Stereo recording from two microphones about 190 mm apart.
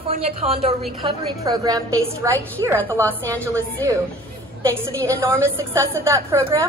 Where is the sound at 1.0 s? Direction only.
20° right (ahead or behind).